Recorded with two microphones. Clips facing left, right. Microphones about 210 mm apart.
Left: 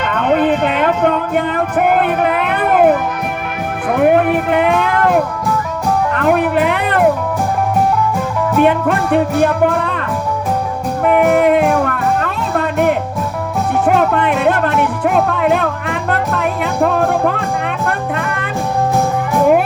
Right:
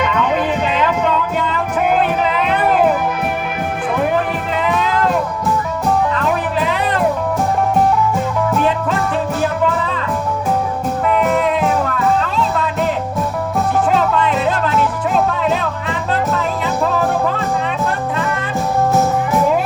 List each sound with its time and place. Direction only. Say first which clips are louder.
0.1 s a sound: left 3 dB; 55° left (ahead or behind)
0.6 s music: left 3 dB; 55° left (ahead or behind)
8.6 s music: left 4 dB; 60° left (ahead or behind)
11.3 s music: left 5 dB; 60° left (ahead or behind)